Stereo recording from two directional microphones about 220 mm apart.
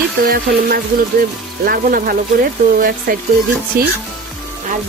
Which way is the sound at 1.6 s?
40° right (ahead or behind).